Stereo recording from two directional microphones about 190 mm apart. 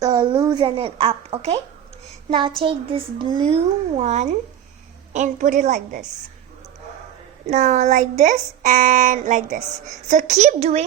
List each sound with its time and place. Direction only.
0.0 s speech: 20° right (ahead or behind)
2.6 s speech: 30° right (ahead or behind)
7.4 s speech: 35° right (ahead or behind)